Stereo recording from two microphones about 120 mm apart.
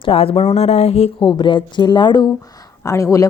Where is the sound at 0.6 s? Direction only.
60° left (ahead or behind).